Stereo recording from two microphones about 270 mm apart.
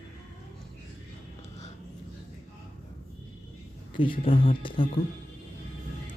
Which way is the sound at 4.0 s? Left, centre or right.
Centre.